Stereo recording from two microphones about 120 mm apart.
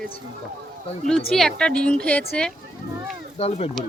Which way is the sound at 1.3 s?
5° left (ahead or behind).